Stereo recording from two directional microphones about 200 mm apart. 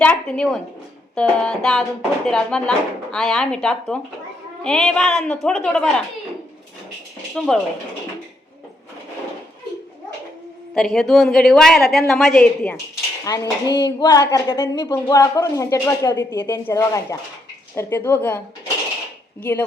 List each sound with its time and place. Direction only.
0.0 s a woman's voice: 5° left (ahead or behind)
7.3 s a woman's voice: 5° left (ahead or behind)
10.8 s a woman's voice: centre (ahead or behind)
13.2 s speech: 15° left (ahead or behind)